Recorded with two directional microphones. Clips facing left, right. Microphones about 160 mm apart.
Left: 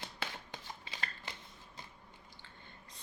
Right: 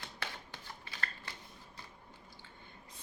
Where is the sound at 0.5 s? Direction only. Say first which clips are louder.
Left 2 dB; 20° left (ahead or behind).